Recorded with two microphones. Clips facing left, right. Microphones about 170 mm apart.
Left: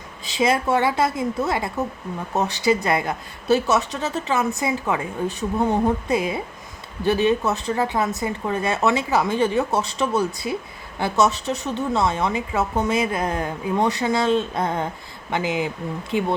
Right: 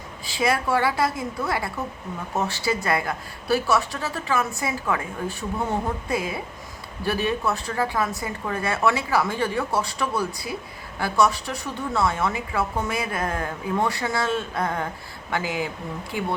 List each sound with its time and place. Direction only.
0.3 s a woman's voice: 20° left (ahead or behind)